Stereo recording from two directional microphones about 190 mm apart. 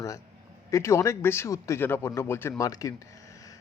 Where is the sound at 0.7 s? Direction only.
15° left (ahead or behind).